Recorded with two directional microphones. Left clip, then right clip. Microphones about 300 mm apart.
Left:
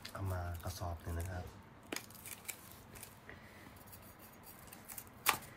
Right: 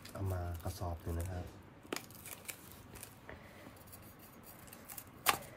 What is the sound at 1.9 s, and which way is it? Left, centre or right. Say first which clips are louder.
Scissors: right 2 dB; centre.